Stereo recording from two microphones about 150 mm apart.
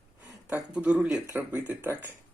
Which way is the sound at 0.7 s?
5° right (ahead or behind).